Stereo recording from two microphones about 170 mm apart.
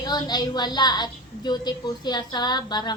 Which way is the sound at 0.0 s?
25° left (ahead or behind).